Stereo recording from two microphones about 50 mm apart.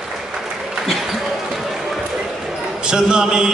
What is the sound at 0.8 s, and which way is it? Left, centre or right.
Basketball bounce, centre.